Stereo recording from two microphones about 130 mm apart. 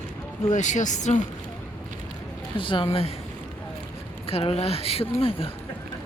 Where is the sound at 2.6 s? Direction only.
40° left (ahead or behind).